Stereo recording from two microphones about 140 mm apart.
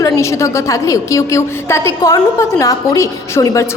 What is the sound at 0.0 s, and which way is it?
A woman's voice, 20° left (ahead or behind).